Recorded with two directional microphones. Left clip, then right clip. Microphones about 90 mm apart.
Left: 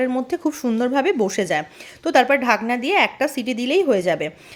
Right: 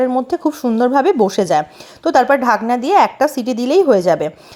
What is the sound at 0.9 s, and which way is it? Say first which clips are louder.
Speech: right 6 dB; 35° right (ahead or behind).